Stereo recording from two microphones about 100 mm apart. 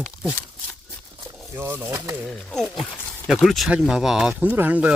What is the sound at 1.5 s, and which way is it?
Speech, 20° right (ahead or behind).